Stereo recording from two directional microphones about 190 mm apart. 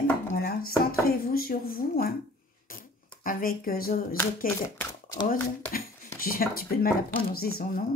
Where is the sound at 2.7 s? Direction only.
50° left (ahead or behind).